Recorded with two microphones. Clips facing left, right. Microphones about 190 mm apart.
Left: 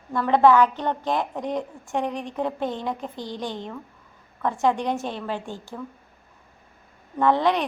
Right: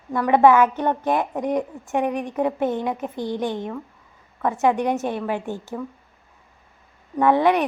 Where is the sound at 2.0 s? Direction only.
55° right (ahead or behind).